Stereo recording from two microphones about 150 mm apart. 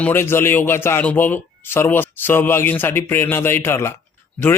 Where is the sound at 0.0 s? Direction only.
15° left (ahead or behind).